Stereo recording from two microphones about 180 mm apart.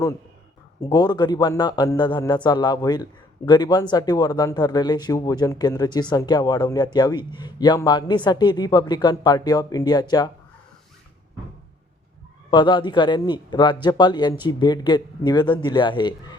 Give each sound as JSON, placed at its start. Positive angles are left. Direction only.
{"t": 0.8, "sound": "a man's voice", "side_deg": 20}
{"t": 12.5, "sound": "a man's voice", "side_deg": 25}